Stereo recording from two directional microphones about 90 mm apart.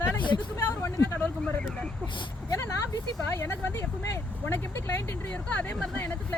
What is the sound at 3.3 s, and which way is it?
Speech, 25° left (ahead or behind).